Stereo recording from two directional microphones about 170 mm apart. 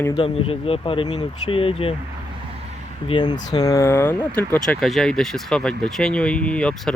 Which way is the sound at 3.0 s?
25° left (ahead or behind).